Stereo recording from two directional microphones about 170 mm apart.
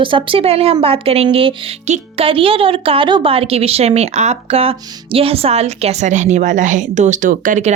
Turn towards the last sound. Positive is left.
turn(degrees=-50)  # may be behind; listen again after turning